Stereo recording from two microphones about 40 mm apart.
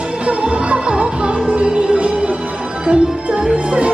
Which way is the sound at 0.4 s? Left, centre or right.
Right.